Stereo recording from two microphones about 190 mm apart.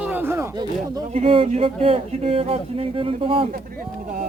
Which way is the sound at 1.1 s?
30° right (ahead or behind).